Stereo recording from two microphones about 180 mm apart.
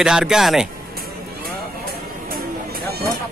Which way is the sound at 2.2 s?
55° right (ahead or behind).